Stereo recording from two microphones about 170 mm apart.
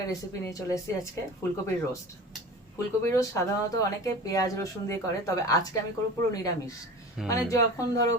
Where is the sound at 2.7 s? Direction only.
15° left (ahead or behind).